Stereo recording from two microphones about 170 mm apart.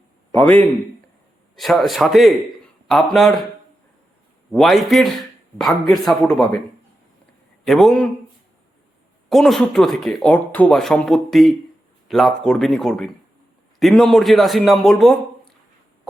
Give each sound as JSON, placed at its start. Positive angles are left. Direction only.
{"t": 0.3, "sound": "a man's voice", "side_deg": 15}
{"t": 1.5, "sound": "speech", "side_deg": 0}
{"t": 4.5, "sound": "speech", "side_deg": 0}
{"t": 7.6, "sound": "speech", "side_deg": 0}
{"t": 9.3, "sound": "speech", "side_deg": 0}